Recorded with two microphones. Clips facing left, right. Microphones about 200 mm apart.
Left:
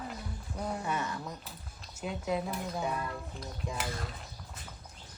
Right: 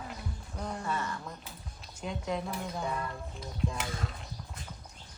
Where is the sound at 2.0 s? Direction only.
5° left (ahead or behind).